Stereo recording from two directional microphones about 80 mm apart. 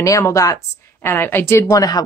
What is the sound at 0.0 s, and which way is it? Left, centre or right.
Speech, left.